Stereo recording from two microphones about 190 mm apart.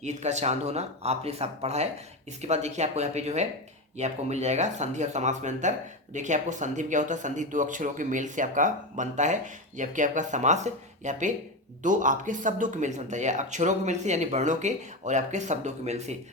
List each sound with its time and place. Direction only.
0.0 s speech: 35° right (ahead or behind)